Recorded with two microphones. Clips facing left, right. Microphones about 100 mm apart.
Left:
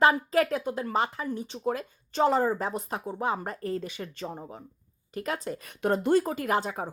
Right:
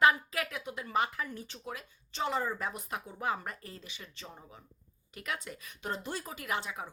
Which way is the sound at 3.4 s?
40° left (ahead or behind).